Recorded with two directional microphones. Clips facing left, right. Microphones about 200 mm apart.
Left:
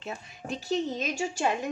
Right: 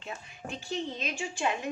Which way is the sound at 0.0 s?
40° left (ahead or behind).